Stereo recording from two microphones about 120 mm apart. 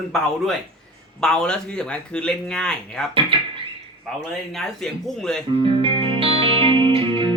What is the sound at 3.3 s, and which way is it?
Beatboxing, 50° right (ahead or behind).